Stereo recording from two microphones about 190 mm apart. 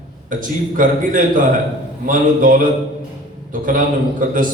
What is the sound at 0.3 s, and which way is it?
A man's voice, 45° right (ahead or behind).